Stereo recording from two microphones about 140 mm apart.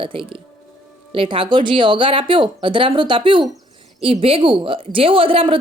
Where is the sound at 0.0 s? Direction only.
35° right (ahead or behind).